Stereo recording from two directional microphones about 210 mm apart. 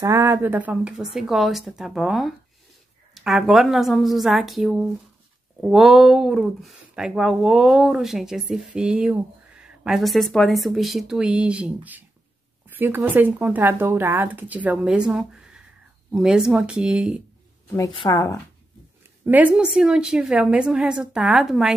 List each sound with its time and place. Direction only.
0.0 s speech: 10° right (ahead or behind)
17.7 s a woman's voice: 20° left (ahead or behind)
19.2 s speech: 10° right (ahead or behind)